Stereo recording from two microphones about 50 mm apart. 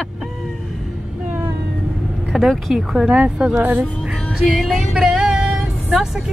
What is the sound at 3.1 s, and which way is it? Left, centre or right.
Speech, right.